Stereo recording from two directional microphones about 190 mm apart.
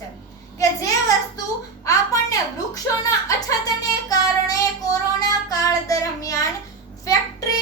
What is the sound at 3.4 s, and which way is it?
Child singing, 20° left (ahead or behind).